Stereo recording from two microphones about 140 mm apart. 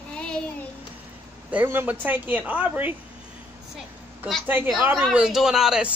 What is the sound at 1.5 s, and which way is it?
Speech, 15° right (ahead or behind).